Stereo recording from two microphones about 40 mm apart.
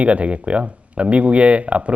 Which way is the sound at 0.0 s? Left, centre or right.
Right.